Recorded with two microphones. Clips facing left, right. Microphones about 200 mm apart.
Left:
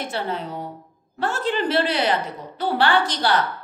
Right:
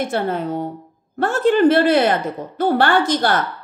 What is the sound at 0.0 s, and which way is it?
A woman's voice, 50° right (ahead or behind).